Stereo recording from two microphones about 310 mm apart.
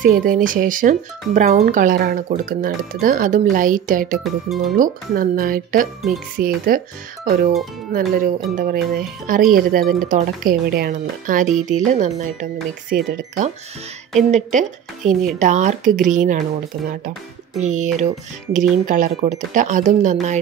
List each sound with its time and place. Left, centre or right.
0.0 s speech: right
14.1 s speech: right